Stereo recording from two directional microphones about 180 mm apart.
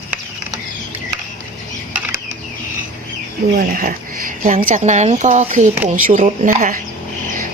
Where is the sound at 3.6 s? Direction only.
50° right (ahead or behind).